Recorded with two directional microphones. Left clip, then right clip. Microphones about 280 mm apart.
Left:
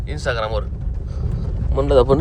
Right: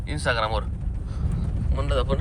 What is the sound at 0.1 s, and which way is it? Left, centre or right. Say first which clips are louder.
Speech: left 2 dB; centre.